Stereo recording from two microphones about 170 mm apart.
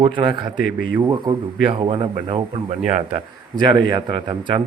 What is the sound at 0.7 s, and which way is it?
Speech, 60° left (ahead or behind).